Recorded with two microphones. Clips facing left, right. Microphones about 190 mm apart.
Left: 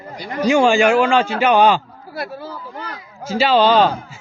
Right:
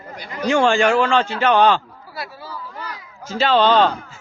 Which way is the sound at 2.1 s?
55° left (ahead or behind).